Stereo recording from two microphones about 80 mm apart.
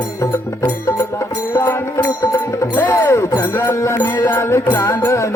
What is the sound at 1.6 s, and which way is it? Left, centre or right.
Music, left.